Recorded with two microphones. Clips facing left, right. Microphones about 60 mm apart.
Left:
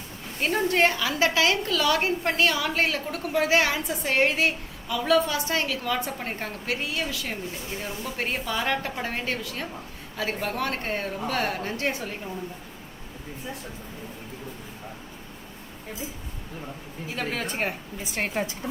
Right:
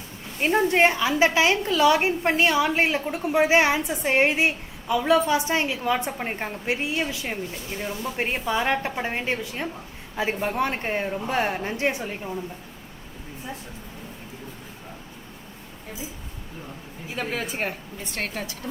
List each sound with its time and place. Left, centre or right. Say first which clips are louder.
0.3 s a woman's voice: right 3 dB; centre
17.2 s a woman's voice: right 1 dB; centre
18.3 s a woman's voice: left 4 dB; left